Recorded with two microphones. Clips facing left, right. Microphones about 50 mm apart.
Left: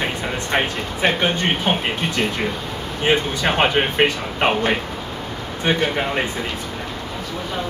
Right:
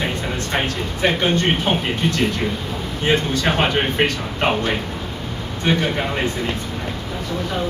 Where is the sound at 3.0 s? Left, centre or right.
Centre.